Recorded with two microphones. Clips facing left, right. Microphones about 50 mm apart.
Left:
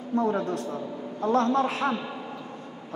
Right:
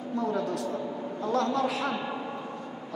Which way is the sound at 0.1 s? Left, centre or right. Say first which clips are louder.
Left 4 dB; left.